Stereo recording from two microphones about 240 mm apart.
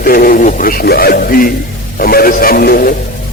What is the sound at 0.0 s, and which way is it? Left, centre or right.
Speech, left.